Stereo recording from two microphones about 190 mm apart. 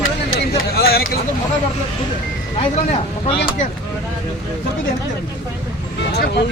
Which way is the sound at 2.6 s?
25° left (ahead or behind).